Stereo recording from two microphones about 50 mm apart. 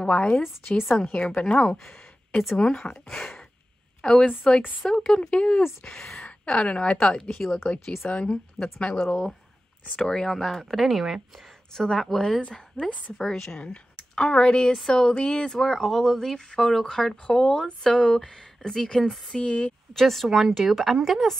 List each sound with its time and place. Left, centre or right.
0.0 s speech: left
1.8 s a sound: centre
2.5 s speech: centre
3.2 s a sound: centre
4.0 s a woman's voice: centre
8.1 s speech: left
8.9 s speech: centre
12.4 s a woman's voice: left
13.2 s a woman's voice: centre
19.4 s speech: left
19.9 s speech: centre